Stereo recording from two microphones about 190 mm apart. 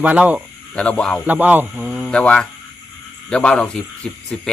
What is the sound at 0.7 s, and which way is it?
Speech, 5° left (ahead or behind).